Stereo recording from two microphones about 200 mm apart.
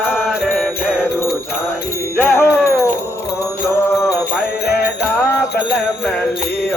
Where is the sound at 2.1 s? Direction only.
10° left (ahead or behind).